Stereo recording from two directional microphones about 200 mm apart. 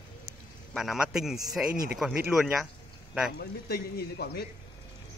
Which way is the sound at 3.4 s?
50° left (ahead or behind).